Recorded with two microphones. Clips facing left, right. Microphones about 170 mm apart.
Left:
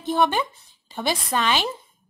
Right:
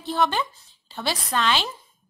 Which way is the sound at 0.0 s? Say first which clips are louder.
Left 2 dB; 15° left (ahead or behind).